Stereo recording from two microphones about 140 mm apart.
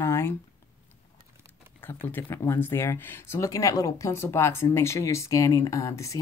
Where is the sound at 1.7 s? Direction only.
15° left (ahead or behind).